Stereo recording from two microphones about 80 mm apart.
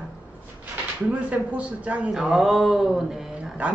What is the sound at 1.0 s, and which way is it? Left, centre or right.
Speech, centre.